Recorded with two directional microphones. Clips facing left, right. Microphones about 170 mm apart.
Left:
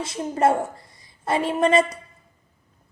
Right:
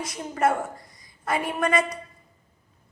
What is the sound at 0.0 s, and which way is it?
A woman's voice, 25° left (ahead or behind).